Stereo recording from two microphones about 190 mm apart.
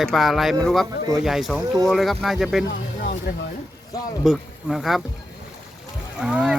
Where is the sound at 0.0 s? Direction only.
Centre (ahead or behind).